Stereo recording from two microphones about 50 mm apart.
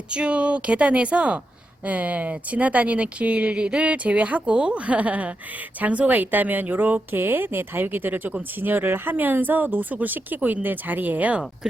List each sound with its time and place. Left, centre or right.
0.1 s speech: right